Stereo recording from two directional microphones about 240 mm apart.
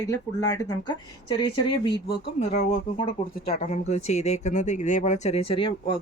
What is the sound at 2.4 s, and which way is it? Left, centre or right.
Speech, left.